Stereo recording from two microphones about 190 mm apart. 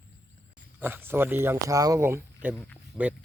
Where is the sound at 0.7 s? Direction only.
10° right (ahead or behind).